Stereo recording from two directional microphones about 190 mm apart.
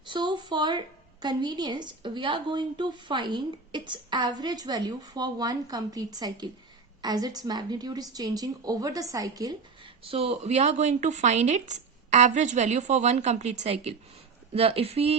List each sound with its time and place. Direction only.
0.1 s a woman's voice: 25° right (ahead or behind)